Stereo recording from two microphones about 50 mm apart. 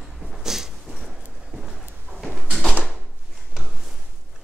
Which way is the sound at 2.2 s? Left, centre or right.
Centre.